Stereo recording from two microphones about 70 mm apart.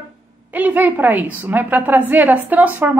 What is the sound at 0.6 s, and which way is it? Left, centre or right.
A woman's voice, right.